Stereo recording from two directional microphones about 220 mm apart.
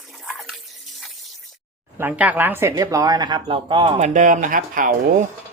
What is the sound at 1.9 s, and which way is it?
Speech, 10° right (ahead or behind).